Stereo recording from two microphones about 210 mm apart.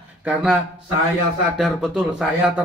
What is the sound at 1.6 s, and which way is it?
Speech, 5° right (ahead or behind).